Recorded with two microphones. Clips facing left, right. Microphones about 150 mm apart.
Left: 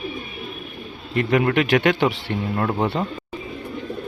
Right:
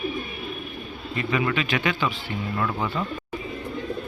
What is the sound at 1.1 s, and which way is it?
A man's voice, 60° left (ahead or behind).